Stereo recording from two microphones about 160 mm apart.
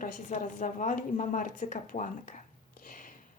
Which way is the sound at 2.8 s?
60° left (ahead or behind).